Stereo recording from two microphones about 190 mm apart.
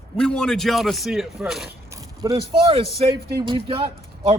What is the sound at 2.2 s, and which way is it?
Speech, 25° right (ahead or behind).